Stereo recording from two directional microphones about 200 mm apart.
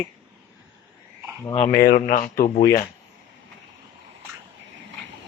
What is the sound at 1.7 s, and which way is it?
Speech, 50° left (ahead or behind).